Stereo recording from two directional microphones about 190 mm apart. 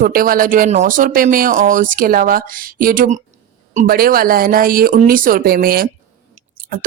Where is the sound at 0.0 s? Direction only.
50° right (ahead or behind).